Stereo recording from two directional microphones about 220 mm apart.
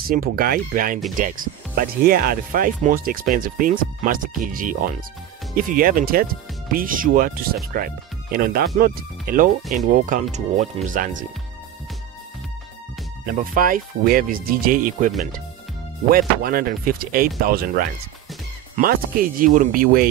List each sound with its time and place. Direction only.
0.0 s speech: 40° right (ahead or behind)
13.2 s speech: 40° right (ahead or behind)